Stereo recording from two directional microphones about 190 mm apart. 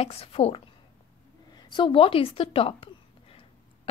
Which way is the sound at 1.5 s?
20° left (ahead or behind).